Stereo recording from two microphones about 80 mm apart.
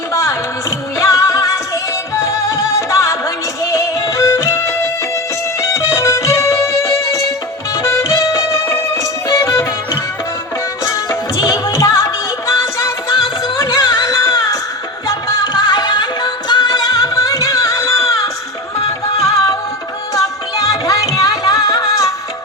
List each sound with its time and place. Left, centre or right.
0.1 s music: left
11.4 s music: left
13.7 s music: left